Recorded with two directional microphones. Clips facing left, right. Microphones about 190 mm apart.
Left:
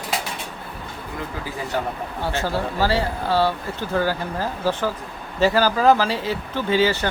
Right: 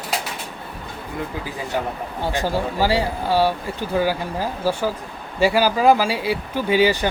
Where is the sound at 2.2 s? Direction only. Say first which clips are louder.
Right 2 dB; 15° right (ahead or behind).